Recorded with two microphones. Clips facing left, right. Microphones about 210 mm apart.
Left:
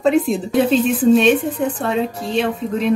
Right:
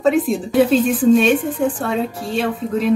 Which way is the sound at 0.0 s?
Centre (ahead or behind).